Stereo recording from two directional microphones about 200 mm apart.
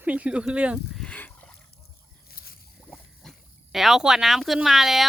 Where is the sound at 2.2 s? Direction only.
50° left (ahead or behind).